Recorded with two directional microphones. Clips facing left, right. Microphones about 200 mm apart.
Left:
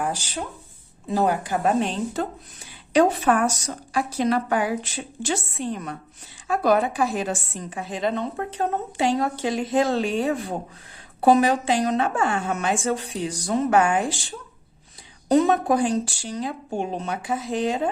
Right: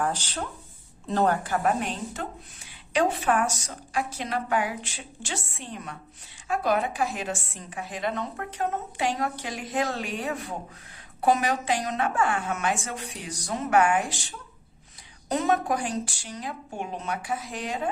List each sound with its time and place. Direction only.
0.0 s a woman's voice: 10° left (ahead or behind)
2.9 s a woman's voice: 40° left (ahead or behind)
15.3 s a woman's voice: 35° left (ahead or behind)